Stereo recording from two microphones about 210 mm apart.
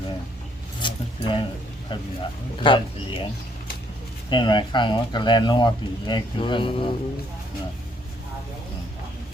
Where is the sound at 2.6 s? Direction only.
25° left (ahead or behind).